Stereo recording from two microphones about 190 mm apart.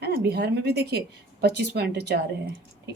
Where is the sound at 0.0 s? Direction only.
55° right (ahead or behind).